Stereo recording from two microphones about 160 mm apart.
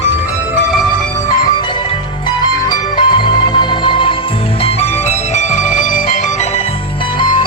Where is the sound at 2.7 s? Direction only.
30° left (ahead or behind).